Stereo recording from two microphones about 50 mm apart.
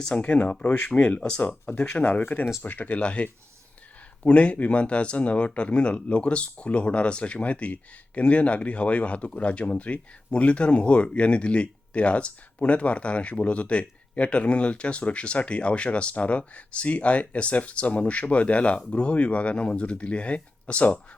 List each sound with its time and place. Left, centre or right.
0.0 s speech: left
0.9 s speech: left
2.2 s speech: left